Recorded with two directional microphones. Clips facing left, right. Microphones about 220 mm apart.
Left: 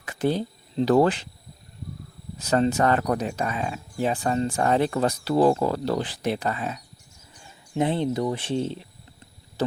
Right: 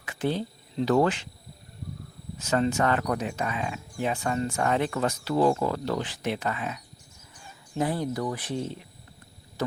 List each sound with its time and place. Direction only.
0.0 s speech: 40° left (ahead or behind)
2.4 s speech: 35° left (ahead or behind)
9.6 s a sound: 30° left (ahead or behind)